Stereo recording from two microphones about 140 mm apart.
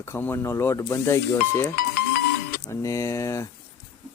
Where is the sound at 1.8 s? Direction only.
90° left.